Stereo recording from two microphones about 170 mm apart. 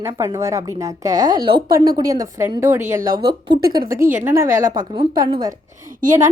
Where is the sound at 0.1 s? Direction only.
20° right (ahead or behind).